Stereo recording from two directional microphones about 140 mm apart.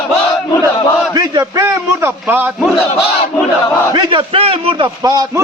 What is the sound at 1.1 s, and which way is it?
A man's voice, 30° right (ahead or behind).